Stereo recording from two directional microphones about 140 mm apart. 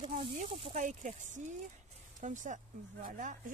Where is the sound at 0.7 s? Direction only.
65° right (ahead or behind).